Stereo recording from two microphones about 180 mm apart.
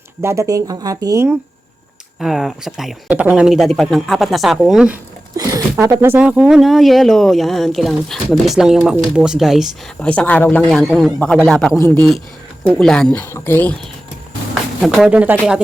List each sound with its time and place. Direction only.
0.2 s speech: 15° right (ahead or behind)
2.1 s speech: centre (ahead or behind)
5.4 s a sound: 20° right (ahead or behind)
5.8 s speech: 15° right (ahead or behind); by 13.7 s 10° left (ahead or behind)
14.8 s speech: centre (ahead or behind)